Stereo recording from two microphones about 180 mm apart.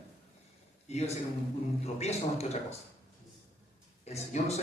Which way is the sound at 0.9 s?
35° left (ahead or behind).